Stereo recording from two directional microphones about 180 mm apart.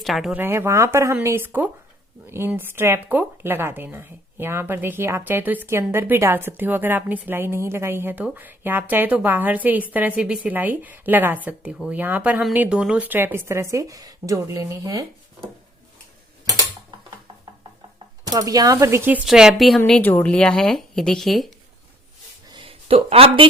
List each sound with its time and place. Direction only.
0.0 s speech: centre (ahead or behind); by 15.0 s 20° right (ahead or behind)
18.3 s speech: 20° right (ahead or behind); by 19.8 s centre (ahead or behind)
19.8 s speech: 10° left (ahead or behind)
22.4 s a sound: 30° right (ahead or behind)